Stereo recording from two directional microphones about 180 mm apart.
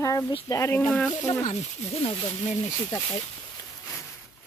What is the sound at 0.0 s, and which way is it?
Speech, 20° left (ahead or behind).